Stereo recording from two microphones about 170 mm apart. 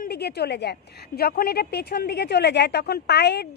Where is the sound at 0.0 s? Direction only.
70° left (ahead or behind).